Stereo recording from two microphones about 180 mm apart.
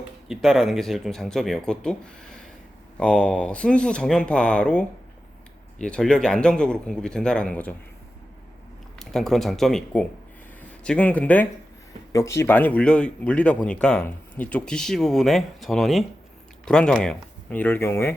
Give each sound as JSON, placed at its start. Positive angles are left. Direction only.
{"t": 0.3, "sound": "speech", "side_deg": 0}
{"t": 9.0, "sound": "speech", "side_deg": 0}